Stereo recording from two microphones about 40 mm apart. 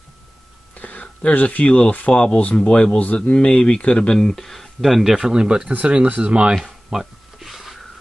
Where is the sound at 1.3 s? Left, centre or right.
Left.